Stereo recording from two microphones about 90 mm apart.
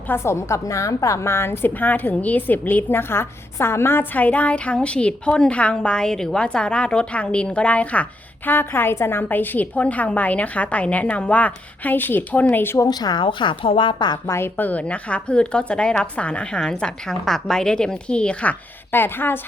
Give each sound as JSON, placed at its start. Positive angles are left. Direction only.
{"t": 0.1, "sound": "a woman's voice", "side_deg": 30}
{"t": 12.8, "sound": "a woman's voice", "side_deg": 50}
{"t": 13.2, "sound": "speech", "side_deg": 70}
{"t": 14.3, "sound": "a woman's voice", "side_deg": 25}
{"t": 18.9, "sound": "speech", "side_deg": 25}